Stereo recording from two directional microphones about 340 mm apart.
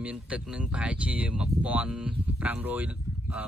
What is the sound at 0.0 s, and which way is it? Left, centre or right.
Speech, centre.